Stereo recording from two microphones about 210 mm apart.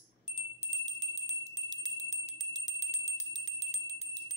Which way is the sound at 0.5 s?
15° right (ahead or behind).